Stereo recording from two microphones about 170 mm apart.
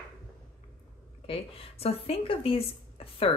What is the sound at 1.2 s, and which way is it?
Speech, 35° left (ahead or behind).